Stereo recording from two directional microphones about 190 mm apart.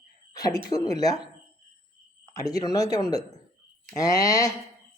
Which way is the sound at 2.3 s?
20° left (ahead or behind).